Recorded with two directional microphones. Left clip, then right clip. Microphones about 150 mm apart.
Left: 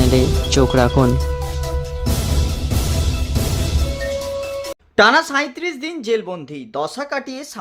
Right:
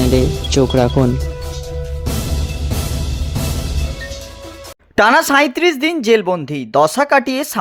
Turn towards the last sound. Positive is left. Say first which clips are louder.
# right 11 dB
turn(degrees=-60)  # may be behind; listen again after turning